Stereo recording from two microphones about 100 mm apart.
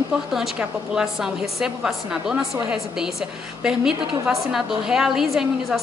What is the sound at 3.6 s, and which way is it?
A woman's voice, 5° right (ahead or behind).